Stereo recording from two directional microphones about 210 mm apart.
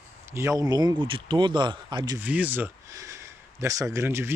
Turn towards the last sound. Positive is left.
turn(degrees=-10)  # may be behind; listen again after turning